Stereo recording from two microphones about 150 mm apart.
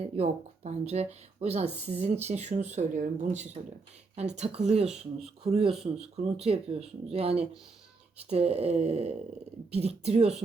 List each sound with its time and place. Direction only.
0.2 s speech: 45° right (ahead or behind)